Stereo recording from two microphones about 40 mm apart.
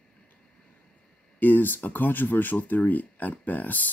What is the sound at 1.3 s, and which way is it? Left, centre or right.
Speech, left.